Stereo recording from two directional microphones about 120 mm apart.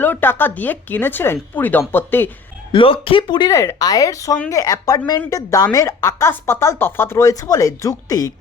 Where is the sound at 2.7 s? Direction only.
50° left (ahead or behind).